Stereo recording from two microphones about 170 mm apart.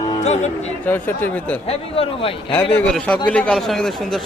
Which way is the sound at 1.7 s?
35° left (ahead or behind).